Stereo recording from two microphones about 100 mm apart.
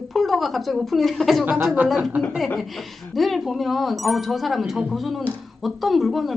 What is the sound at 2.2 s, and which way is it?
Speech, centre (ahead or behind).